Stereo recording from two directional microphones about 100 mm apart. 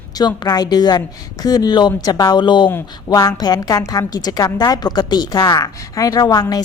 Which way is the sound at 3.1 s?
35° left (ahead or behind).